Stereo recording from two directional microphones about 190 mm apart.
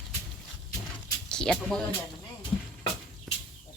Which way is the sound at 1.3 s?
5° left (ahead or behind).